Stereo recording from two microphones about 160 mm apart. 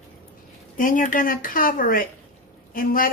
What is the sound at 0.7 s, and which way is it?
Speech, 55° left (ahead or behind).